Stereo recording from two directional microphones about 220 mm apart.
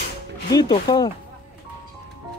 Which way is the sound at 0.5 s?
20° left (ahead or behind).